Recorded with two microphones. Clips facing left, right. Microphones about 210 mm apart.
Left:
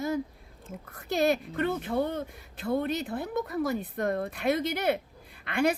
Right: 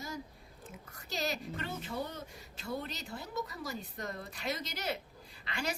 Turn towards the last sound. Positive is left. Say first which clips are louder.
# left 13 dB
turn(degrees=55)  # may be behind; listen again after turning